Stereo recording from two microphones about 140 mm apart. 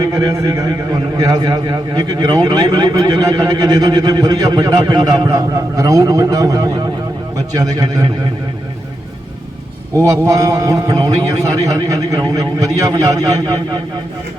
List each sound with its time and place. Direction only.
0.0 s a man's voice: 25° right (ahead or behind)
10.1 s a man's voice: 25° right (ahead or behind)